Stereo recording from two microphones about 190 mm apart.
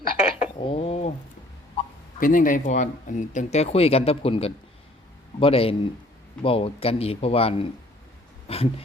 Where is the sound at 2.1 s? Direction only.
45° left (ahead or behind).